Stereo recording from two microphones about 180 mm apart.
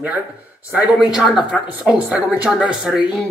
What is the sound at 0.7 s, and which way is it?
Speech, 5° right (ahead or behind).